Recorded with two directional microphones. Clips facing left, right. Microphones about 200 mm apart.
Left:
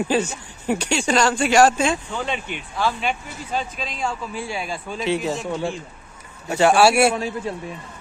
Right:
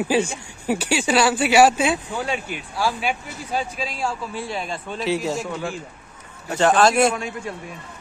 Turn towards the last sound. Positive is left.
turn(degrees=30)  # may be behind; listen again after turning